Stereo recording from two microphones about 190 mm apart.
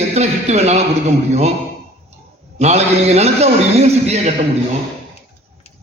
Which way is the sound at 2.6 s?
35° right (ahead or behind).